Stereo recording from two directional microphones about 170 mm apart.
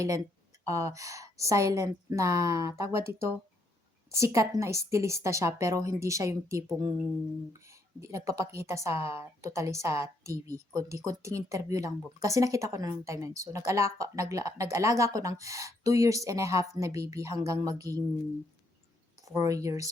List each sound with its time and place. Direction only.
0.6 s a woman's voice: 20° right (ahead or behind)
7.6 s a sound: 15° right (ahead or behind)
8.3 s a woman's voice: 20° right (ahead or behind)
19.2 s speech: 20° right (ahead or behind)